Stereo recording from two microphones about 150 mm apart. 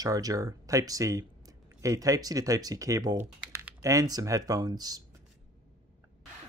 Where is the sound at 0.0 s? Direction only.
25° right (ahead or behind).